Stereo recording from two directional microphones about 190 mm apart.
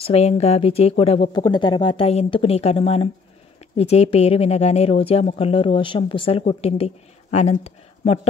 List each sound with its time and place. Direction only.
0.0 s a woman's voice: 35° left (ahead or behind)